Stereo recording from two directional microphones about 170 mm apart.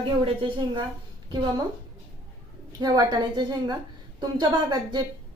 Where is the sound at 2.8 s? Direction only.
25° right (ahead or behind).